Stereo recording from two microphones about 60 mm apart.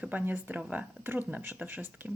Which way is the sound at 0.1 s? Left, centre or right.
Right.